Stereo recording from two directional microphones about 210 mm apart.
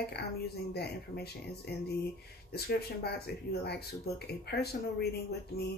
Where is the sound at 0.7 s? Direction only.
50° left (ahead or behind).